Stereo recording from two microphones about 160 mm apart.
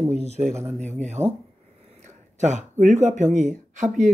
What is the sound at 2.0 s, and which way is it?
Speech, 45° right (ahead or behind).